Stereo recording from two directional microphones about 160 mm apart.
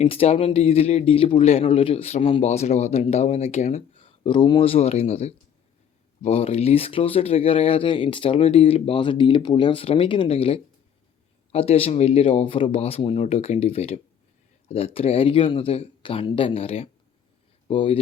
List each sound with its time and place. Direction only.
0.0 s speech: 35° left (ahead or behind)